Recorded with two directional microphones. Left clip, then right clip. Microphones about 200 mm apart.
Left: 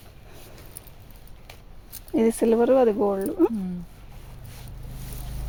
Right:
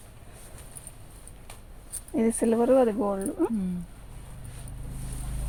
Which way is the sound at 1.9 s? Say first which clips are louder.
Left 5 dB; 50° left (ahead or behind).